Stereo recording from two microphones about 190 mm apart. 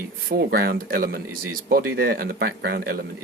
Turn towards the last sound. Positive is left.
turn(degrees=-55)  # may be behind; listen again after turning